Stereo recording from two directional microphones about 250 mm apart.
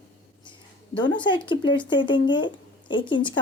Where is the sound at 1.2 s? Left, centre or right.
Centre.